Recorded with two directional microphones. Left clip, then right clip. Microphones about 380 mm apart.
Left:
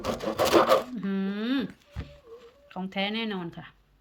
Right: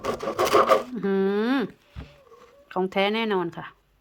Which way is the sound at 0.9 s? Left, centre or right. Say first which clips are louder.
Right 10 dB; centre.